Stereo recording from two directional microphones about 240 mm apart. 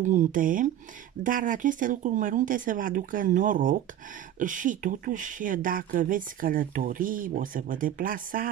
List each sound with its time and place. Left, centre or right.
0.0 s speech: right